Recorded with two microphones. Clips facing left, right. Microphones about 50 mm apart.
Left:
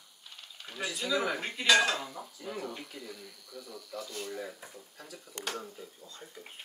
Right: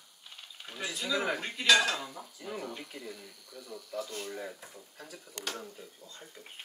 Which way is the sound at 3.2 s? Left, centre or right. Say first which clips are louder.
Left 2 dB; right.